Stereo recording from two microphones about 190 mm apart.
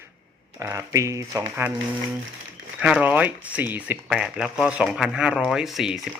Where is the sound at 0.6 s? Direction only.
15° right (ahead or behind).